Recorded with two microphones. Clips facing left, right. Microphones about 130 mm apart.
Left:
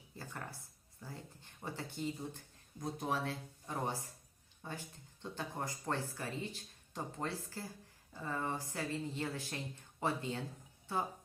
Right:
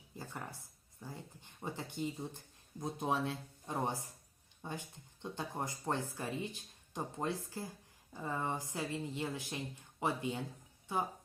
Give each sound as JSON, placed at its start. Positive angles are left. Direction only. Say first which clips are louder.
{"t": 0.2, "sound": "speech", "louder": "right 1 dB", "side_deg": -15}